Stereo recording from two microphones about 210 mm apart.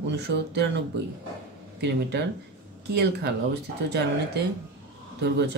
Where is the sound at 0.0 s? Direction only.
55° right (ahead or behind).